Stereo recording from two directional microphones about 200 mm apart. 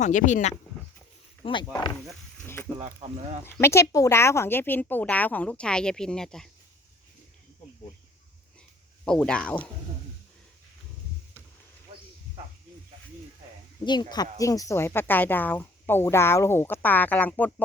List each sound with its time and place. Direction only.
0.0 s speech: 40° left (ahead or behind)
1.7 s speech: 20° left (ahead or behind)
2.8 s speech: 35° right (ahead or behind)
3.4 s speech: 15° left (ahead or behind)
9.0 s speech: 5° left (ahead or behind)
13.8 s speech: 20° left (ahead or behind)